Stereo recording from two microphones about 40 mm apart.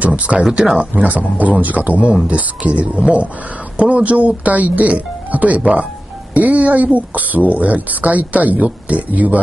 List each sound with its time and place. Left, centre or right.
0.0 s speech: right
6.3 s speech: right